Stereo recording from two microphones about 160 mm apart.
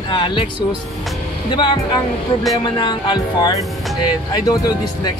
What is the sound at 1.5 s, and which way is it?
Speech, 30° left (ahead or behind).